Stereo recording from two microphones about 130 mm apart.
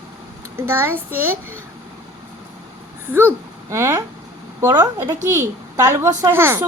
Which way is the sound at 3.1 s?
20° right (ahead or behind).